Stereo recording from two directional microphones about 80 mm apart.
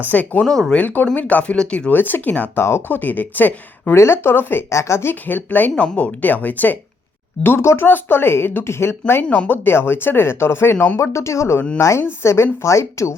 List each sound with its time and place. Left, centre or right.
0.1 s speech: centre
1.9 s speech: left
2.6 s speech: left
4.7 s speech: left
7.4 s speech: left